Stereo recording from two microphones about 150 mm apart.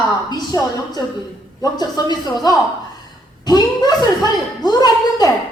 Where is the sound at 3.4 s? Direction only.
25° left (ahead or behind).